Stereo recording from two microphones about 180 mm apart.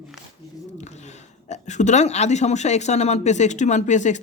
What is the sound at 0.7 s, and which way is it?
Speech, 40° left (ahead or behind).